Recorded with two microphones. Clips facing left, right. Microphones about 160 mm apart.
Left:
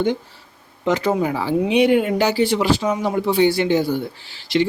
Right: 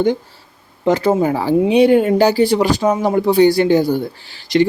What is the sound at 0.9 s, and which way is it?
Speech, 35° right (ahead or behind).